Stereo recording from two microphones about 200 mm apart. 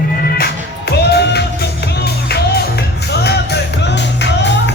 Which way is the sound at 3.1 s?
55° left (ahead or behind).